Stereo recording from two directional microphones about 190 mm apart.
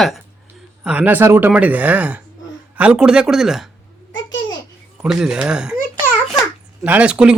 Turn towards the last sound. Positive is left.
turn(degrees=-5)  # may be behind; listen again after turning